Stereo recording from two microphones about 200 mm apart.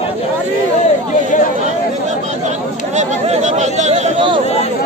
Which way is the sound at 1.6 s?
35° right (ahead or behind).